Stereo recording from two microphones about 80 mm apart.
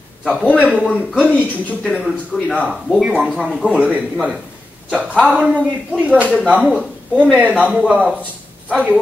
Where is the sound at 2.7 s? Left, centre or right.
Centre.